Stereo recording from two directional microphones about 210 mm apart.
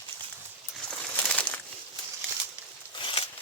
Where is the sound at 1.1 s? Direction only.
5° left (ahead or behind).